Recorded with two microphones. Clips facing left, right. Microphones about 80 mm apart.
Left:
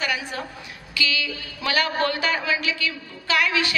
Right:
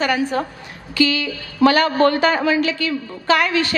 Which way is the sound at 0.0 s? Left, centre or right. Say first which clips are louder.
Right 8 dB; right.